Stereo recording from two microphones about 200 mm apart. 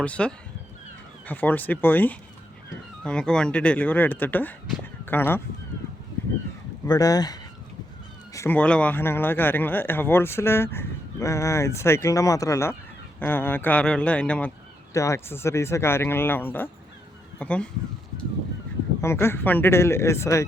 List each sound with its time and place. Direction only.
0.0 s speech: 5° left (ahead or behind)
6.8 s speech: 20° left (ahead or behind)
19.0 s speech: 10° left (ahead or behind)